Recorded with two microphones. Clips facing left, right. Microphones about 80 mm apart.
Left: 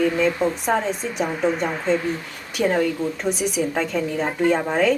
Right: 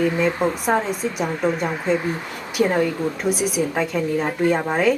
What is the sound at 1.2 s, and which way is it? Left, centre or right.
Speech, centre.